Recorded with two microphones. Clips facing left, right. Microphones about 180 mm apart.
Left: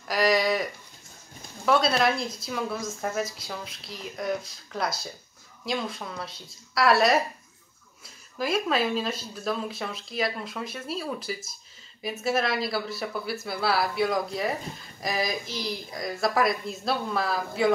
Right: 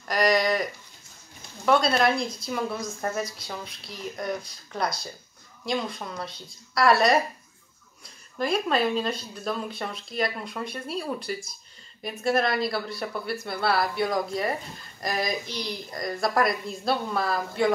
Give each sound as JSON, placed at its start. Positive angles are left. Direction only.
{"t": 0.1, "sound": "speech", "side_deg": 0}
{"t": 1.7, "sound": "speech", "side_deg": 0}
{"t": 8.4, "sound": "speech", "side_deg": 0}